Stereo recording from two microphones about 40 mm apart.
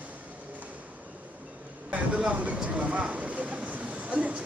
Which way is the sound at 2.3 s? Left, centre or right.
Right.